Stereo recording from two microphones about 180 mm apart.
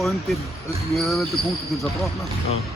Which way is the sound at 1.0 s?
Centre (ahead or behind).